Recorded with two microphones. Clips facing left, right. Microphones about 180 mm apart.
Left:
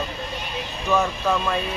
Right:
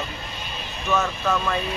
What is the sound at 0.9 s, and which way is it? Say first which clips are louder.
Speech: left 2 dB; 15° left (ahead or behind).